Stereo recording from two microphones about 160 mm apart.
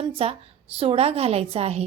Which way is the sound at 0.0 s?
35° right (ahead or behind).